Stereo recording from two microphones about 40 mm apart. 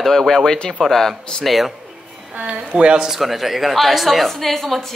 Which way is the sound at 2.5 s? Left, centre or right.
Right.